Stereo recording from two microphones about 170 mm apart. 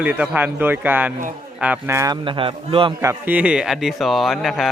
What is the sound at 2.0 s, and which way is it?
Speech, 25° right (ahead or behind).